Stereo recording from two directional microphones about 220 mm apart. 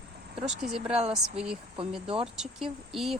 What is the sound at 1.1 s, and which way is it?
Speech, 5° right (ahead or behind).